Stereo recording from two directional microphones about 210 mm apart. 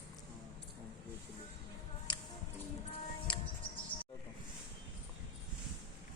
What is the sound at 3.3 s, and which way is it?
Music, 20° left (ahead or behind).